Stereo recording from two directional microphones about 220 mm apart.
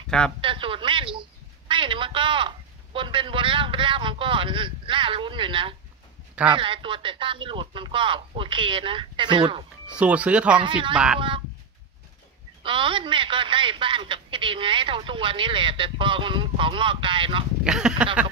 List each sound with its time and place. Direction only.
0.4 s a sound: 25° right (ahead or behind)
1.7 s a man's voice: 20° right (ahead or behind)
9.9 s speech: 5° right (ahead or behind)
10.6 s a woman's voice: 20° right (ahead or behind)
12.6 s a woman's voice: 20° right (ahead or behind)
17.6 s speech: 5° right (ahead or behind)